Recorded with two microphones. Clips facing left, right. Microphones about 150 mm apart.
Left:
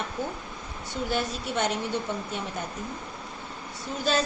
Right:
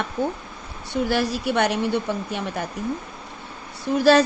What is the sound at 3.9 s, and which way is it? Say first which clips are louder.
Speech: right 11 dB; 75° right (ahead or behind).